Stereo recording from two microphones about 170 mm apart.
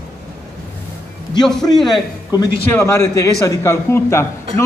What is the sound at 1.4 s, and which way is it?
Speech, 5° left (ahead or behind).